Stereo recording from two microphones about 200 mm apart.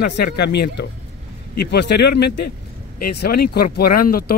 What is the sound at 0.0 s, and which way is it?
Speech, 55° left (ahead or behind).